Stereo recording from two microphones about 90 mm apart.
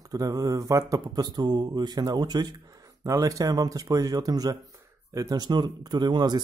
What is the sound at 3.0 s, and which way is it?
Speech, 40° right (ahead or behind).